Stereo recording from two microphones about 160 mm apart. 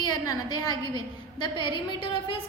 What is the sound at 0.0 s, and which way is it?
A woman's voice, 25° left (ahead or behind).